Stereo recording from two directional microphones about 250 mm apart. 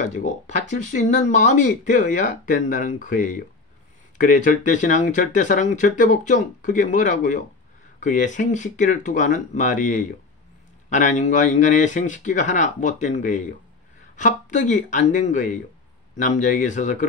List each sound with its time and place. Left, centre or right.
0.0 s speech: left